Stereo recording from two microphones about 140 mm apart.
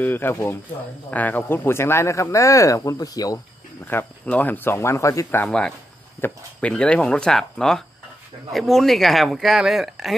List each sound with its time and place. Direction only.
0.0 s speech: 15° left (ahead or behind)
3.8 s speech: 15° left (ahead or behind)